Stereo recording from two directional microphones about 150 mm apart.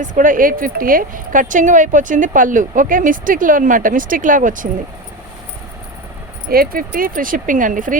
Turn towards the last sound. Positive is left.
turn(degrees=-60)  # may be behind; listen again after turning